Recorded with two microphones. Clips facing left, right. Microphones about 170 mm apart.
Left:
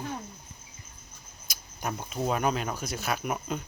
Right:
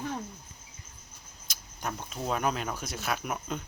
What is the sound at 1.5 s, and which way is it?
Speech, 10° left (ahead or behind).